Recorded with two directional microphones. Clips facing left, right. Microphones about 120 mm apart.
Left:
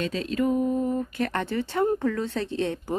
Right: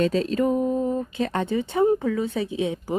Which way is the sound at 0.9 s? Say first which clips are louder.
Right 2 dB; 20° right (ahead or behind).